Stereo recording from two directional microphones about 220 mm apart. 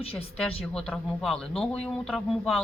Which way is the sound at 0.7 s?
5° left (ahead or behind).